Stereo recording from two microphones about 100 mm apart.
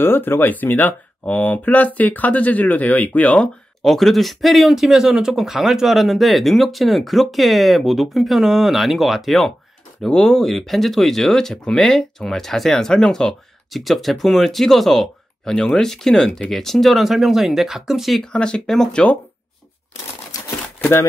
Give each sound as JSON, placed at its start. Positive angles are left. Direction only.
{"t": 0.0, "sound": "speech", "side_deg": 20}
{"t": 3.8, "sound": "speech", "side_deg": 0}